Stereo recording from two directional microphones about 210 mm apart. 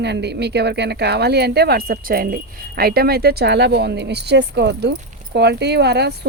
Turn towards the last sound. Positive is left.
turn(degrees=-50)  # may be behind; listen again after turning